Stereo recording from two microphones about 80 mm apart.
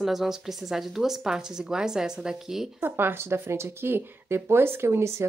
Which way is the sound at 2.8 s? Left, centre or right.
Right.